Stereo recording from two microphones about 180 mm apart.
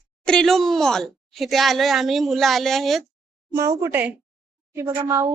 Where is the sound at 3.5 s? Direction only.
15° right (ahead or behind).